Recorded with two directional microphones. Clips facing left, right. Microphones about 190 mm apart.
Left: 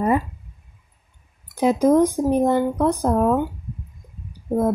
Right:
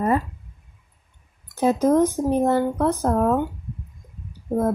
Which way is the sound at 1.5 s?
15° left (ahead or behind).